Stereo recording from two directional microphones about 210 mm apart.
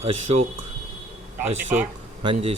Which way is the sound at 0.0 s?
30° right (ahead or behind).